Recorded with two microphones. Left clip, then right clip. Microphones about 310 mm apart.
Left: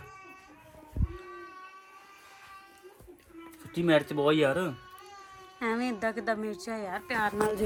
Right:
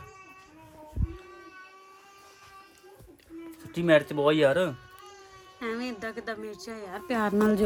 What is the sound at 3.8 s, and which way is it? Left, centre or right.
Speech, centre.